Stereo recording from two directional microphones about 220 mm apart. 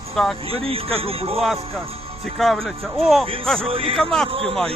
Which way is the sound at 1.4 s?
Centre (ahead or behind).